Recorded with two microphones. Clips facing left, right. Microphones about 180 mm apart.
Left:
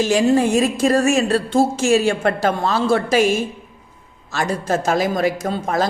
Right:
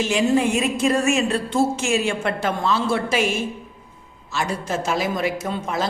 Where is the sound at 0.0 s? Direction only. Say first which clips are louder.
Left 3 dB; 40° left (ahead or behind).